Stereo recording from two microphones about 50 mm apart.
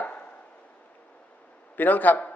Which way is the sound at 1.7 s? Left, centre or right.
Left.